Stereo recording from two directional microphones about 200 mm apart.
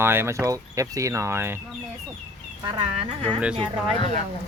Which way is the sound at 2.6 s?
25° right (ahead or behind).